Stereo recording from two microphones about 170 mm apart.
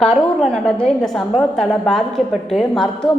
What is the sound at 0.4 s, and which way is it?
A woman's voice, 5° left (ahead or behind).